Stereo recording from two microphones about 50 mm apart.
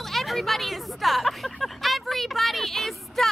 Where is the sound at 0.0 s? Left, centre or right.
Centre.